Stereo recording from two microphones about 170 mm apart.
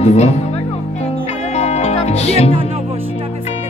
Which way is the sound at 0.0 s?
40° left (ahead or behind).